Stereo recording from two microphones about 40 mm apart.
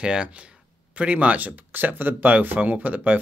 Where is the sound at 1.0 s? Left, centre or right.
Right.